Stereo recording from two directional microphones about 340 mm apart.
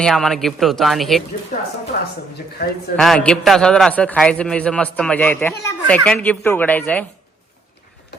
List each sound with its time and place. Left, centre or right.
0.0 s a man's voice: centre
1.9 s a woman's voice: left
2.9 s a man's voice: centre